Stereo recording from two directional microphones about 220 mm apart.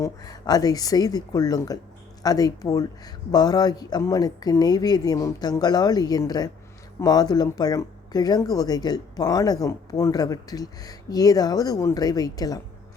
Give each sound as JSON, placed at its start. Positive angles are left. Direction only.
{"t": 0.0, "sound": "speech", "side_deg": 15}